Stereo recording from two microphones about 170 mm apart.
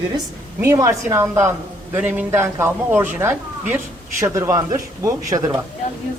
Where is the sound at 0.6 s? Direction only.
20° right (ahead or behind).